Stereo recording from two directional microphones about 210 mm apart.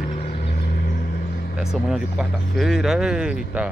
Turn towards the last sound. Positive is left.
turn(degrees=-5)  # may be behind; listen again after turning